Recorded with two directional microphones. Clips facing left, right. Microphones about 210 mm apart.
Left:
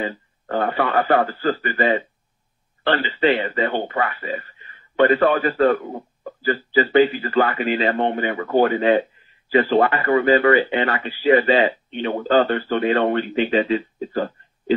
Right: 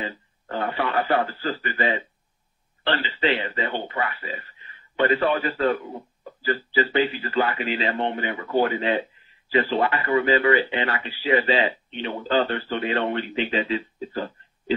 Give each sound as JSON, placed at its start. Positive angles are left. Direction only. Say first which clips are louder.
{"t": 0.0, "sound": "speech", "louder": "left 6 dB", "side_deg": 50}